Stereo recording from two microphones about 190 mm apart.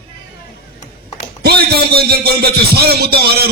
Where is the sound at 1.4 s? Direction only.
55° right (ahead or behind).